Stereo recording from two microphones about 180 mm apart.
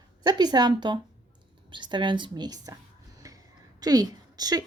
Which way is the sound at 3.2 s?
20° right (ahead or behind).